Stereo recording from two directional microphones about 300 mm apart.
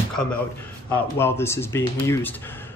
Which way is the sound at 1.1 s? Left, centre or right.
Centre.